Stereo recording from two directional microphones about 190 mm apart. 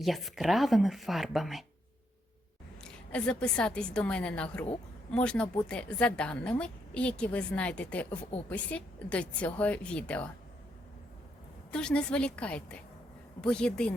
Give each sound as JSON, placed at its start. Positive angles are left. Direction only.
{"t": 0.0, "sound": "a woman's voice", "side_deg": 0}
{"t": 2.8, "sound": "a woman's voice", "side_deg": 5}
{"t": 11.7, "sound": "a woman's voice", "side_deg": 5}